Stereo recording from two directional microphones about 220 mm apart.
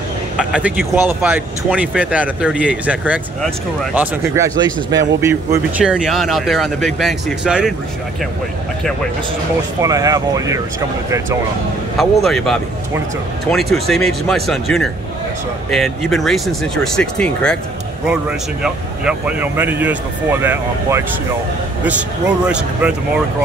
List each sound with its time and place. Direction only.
0.4 s speech: 5° right (ahead or behind)
9.8 s speech: 15° right (ahead or behind)
12.0 s speech: centre (ahead or behind)
22.5 s speech: 5° right (ahead or behind)